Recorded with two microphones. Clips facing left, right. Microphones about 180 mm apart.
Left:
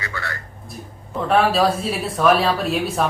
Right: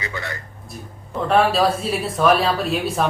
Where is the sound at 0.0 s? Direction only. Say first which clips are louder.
Right 1 dB; 20° right (ahead or behind).